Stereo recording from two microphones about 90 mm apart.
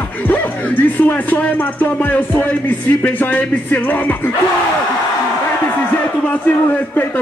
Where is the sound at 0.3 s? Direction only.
20° left (ahead or behind).